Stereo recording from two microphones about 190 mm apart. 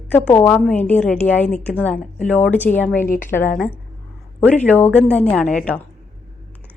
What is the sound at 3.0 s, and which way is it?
Speech, 45° left (ahead or behind).